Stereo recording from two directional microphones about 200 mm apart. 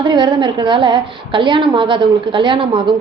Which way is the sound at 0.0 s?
20° right (ahead or behind).